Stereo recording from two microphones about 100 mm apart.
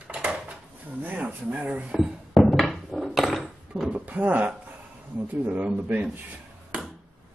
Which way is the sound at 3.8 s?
15° right (ahead or behind).